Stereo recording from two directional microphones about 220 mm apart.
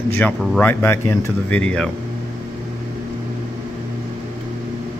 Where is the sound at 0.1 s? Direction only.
5° left (ahead or behind).